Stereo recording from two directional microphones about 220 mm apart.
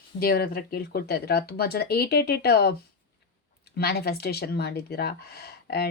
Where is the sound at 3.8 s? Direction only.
45° left (ahead or behind).